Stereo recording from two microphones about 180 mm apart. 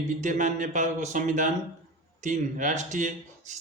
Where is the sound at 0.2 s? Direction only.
45° right (ahead or behind).